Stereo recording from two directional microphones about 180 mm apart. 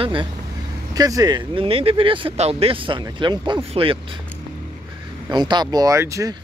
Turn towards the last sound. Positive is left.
turn(degrees=-15)  # may be behind; listen again after turning